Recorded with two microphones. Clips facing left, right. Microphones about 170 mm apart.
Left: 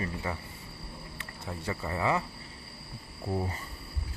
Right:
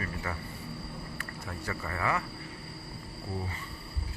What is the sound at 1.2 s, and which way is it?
Speech, 20° left (ahead or behind).